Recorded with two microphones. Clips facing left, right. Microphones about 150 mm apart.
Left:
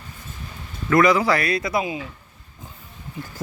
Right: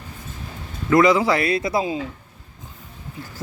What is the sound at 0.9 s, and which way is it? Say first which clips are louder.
A man's voice: right 1 dB; 25° right (ahead or behind).